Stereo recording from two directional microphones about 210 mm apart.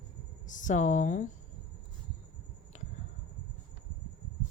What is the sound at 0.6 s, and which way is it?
Speech, 35° left (ahead or behind).